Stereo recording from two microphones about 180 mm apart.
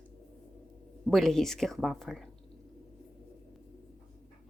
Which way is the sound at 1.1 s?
Centre (ahead or behind).